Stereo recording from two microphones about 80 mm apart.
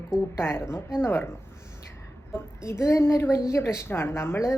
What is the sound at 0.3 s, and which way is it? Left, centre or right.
Speech, left.